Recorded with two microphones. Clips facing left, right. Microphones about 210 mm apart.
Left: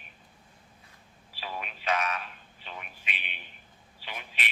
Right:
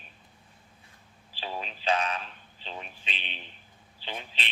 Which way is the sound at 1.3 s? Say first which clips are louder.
Right 2 dB; 30° right (ahead or behind).